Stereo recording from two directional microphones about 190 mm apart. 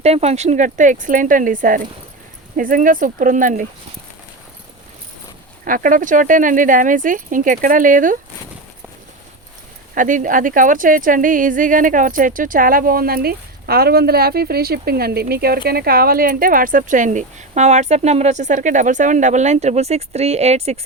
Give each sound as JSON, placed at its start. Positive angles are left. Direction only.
{"t": 0.0, "sound": "speech", "side_deg": -35}
{"t": 5.6, "sound": "speech", "side_deg": -45}
{"t": 9.9, "sound": "speech", "side_deg": -45}